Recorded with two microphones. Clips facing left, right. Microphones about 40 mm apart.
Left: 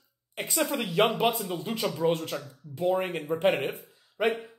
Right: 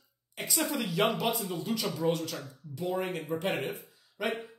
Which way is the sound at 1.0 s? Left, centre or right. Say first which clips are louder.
Left 4 dB; left.